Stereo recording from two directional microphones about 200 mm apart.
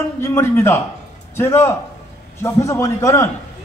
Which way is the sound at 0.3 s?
15° left (ahead or behind).